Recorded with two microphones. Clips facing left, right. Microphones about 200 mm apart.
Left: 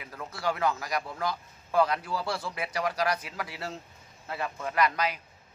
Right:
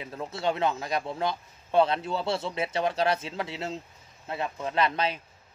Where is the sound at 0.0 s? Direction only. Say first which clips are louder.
Right 3 dB; 25° right (ahead or behind).